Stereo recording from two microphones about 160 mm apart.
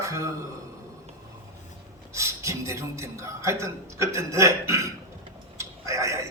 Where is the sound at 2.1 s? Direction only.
20° right (ahead or behind).